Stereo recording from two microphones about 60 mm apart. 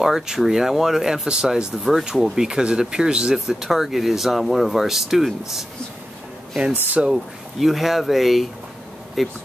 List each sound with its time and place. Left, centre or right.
0.0 s speech: centre
6.7 s speech: right
7.1 s speech: centre